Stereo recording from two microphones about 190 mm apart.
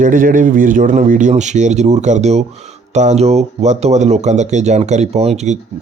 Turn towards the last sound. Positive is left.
turn(degrees=-35)  # may be behind; listen again after turning